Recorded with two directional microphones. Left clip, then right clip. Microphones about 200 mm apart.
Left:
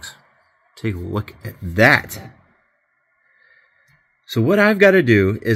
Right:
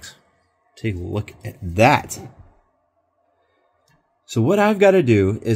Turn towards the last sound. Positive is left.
turn(degrees=10)  # may be behind; listen again after turning